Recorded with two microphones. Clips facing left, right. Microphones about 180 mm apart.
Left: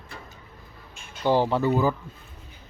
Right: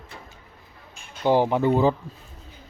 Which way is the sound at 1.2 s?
15° right (ahead or behind).